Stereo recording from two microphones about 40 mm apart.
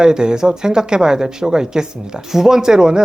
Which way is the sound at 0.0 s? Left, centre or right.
Centre.